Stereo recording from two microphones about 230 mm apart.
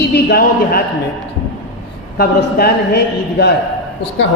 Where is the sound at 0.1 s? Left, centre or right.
Left.